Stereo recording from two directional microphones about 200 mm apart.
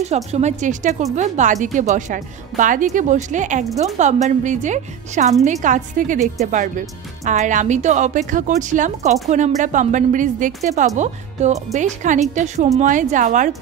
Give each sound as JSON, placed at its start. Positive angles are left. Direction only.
{"t": 0.0, "sound": "a woman's voice", "side_deg": -35}